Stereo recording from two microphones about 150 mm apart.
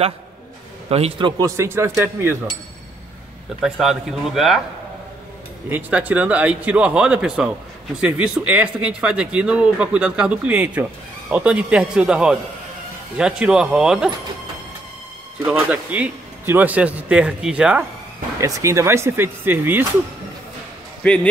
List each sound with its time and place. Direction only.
0.8 s a man's voice: 40° right (ahead or behind)
1.4 s speech: 20° right (ahead or behind)
3.6 s speech: 5° right (ahead or behind)
5.7 s speech: 10° right (ahead or behind)
15.4 s speech: 10° right (ahead or behind)
18.4 s speech: 20° right (ahead or behind)
21.0 s speech: 10° left (ahead or behind)